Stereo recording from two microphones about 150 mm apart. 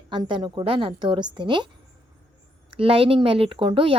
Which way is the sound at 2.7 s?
40° right (ahead or behind).